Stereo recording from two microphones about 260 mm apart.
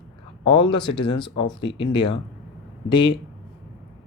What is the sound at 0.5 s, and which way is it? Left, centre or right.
Speech, centre.